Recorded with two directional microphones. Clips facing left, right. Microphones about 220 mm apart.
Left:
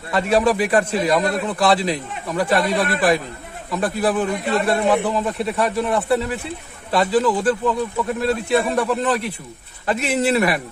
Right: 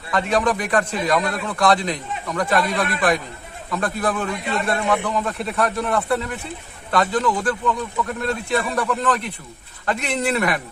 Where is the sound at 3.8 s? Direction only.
5° left (ahead or behind).